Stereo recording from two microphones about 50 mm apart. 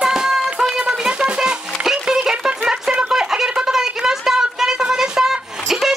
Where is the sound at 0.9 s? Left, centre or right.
Centre.